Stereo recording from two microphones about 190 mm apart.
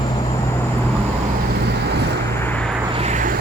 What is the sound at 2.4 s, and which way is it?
Vehicle, 10° left (ahead or behind).